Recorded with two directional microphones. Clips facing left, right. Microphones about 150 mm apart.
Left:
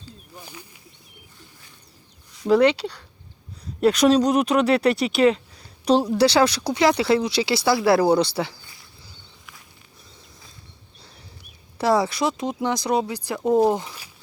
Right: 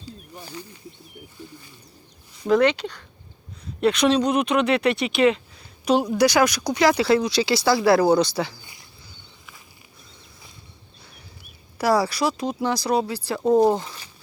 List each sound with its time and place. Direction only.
0.3 s speech: 10° left (ahead or behind)
2.5 s speech: 10° left (ahead or behind)
3.8 s speech: 40° left (ahead or behind); by 8.5 s 25° left (ahead or behind)
11.8 s speech: 20° left (ahead or behind)
13.7 s a sound: 10° left (ahead or behind)